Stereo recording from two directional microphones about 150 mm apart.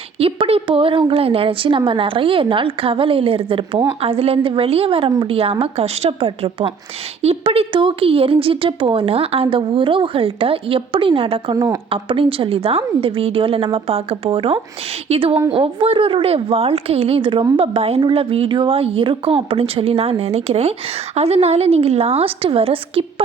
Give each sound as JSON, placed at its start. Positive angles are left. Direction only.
{"t": 0.2, "sound": "a woman's voice", "side_deg": -40}
{"t": 11.5, "sound": "speech", "side_deg": -25}
{"t": 11.9, "sound": "a woman's voice", "side_deg": -35}